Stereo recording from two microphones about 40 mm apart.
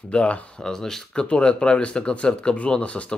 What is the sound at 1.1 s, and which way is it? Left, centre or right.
Speech, left.